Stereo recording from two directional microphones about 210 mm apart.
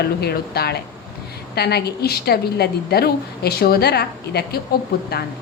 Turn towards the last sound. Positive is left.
turn(degrees=50)  # may be behind; listen again after turning